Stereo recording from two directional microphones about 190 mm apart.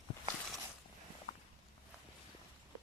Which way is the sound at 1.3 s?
50° left (ahead or behind).